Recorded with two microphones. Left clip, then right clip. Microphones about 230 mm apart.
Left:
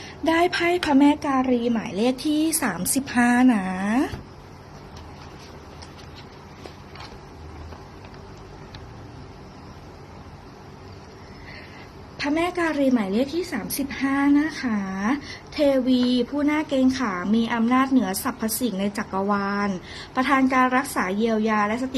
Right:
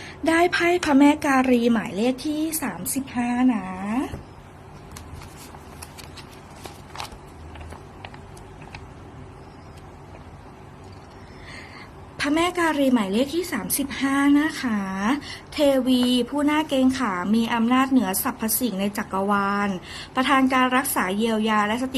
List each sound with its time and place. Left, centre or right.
0.0 s a woman's voice: centre
1.9 s a woman's voice: centre; by 4.1 s left
12.1 s a woman's voice: centre